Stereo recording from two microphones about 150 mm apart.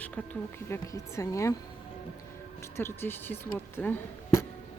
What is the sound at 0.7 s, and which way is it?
Speech, 20° left (ahead or behind).